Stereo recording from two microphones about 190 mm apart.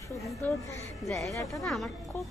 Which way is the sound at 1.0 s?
Centre (ahead or behind).